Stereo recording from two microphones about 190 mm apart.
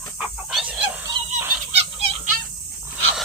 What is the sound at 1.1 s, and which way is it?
Goose, 15° right (ahead or behind).